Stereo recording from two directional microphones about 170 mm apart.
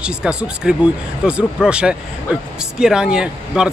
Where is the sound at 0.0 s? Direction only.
5° right (ahead or behind).